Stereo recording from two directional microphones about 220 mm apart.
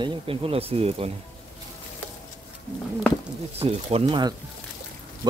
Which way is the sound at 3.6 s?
25° right (ahead or behind).